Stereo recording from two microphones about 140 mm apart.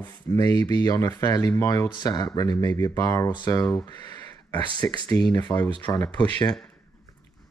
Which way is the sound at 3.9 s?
30° left (ahead or behind).